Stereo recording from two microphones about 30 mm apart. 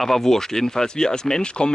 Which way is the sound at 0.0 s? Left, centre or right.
Centre.